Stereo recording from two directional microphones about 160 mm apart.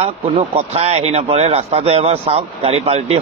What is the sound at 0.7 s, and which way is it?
A man's voice, 40° right (ahead or behind).